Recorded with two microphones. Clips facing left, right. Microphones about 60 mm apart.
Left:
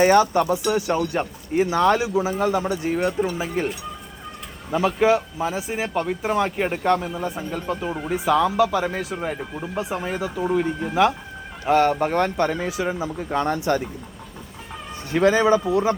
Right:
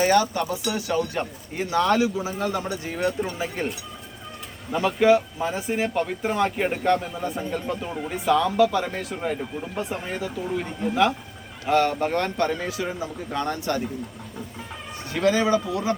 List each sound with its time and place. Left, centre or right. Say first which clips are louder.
0.0 s speech: left 4 dB; left; by 3.7 s centre
4.9 s speech: right 3 dB; centre
15.1 s speech: left 4 dB; left